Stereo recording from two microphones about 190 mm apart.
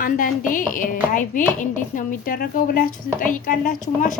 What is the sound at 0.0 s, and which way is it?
A woman's voice, 45° left (ahead or behind).